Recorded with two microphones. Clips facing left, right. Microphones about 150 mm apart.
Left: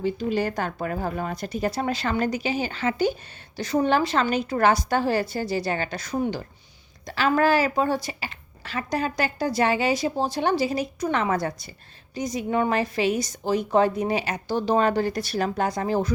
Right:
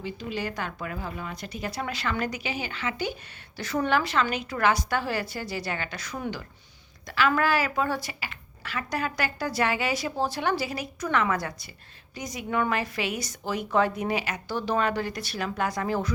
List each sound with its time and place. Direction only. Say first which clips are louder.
0.0 s speech: left 8 dB; 40° left (ahead or behind)
3.6 s a woman's voice: left 4 dB; 20° left (ahead or behind)